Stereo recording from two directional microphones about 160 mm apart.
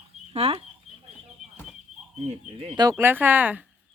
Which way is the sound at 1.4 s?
Centre (ahead or behind).